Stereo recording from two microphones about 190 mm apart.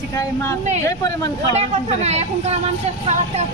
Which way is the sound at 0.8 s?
15° left (ahead or behind).